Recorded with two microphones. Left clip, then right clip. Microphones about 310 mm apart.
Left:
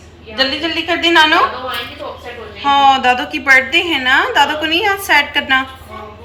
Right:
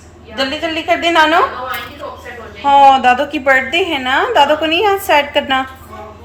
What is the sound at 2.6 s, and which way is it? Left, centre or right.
A woman's voice, right.